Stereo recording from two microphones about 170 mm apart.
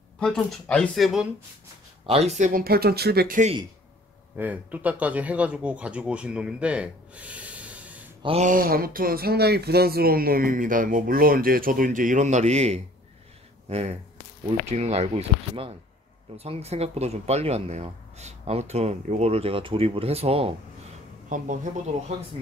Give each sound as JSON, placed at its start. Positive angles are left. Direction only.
{"t": 0.2, "sound": "speech", "side_deg": 5}
{"t": 2.0, "sound": "speech", "side_deg": -40}
{"t": 4.4, "sound": "speech", "side_deg": -10}
{"t": 8.2, "sound": "mantra", "side_deg": -35}
{"t": 8.5, "sound": "speech", "side_deg": -55}
{"t": 21.3, "sound": "speech", "side_deg": -50}